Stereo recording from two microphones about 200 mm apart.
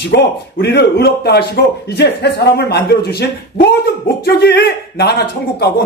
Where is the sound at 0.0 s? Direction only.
55° left (ahead or behind).